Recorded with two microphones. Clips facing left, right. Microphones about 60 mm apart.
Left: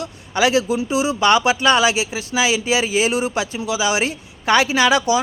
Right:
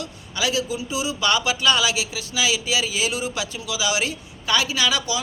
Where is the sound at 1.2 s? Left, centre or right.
Left.